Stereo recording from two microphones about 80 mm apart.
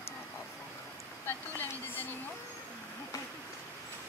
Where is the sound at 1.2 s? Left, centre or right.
Left.